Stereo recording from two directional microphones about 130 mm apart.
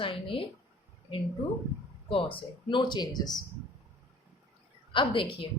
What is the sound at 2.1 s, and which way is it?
Speech, 45° left (ahead or behind).